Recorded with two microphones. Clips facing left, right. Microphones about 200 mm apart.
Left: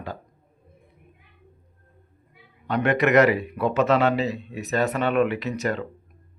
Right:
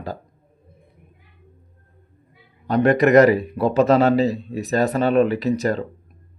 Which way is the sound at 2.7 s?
35° right (ahead or behind).